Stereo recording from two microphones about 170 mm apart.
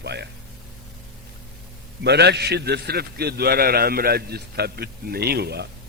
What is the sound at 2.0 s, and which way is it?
A man's voice, 80° right.